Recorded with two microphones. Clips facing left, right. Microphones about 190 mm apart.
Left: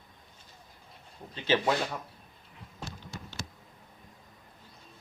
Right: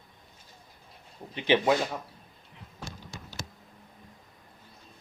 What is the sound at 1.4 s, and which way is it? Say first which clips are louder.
Speech: right 3 dB; 15° right (ahead or behind).